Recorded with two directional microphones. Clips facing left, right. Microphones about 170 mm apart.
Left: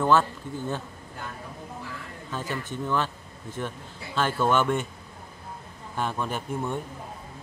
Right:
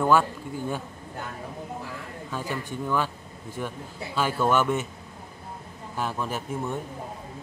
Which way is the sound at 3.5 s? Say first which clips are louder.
Right 1 dB; 10° right (ahead or behind).